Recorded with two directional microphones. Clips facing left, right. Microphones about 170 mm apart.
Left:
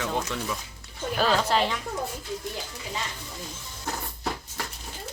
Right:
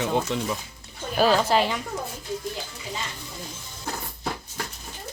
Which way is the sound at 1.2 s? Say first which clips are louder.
Right 4 dB; 10° right (ahead or behind).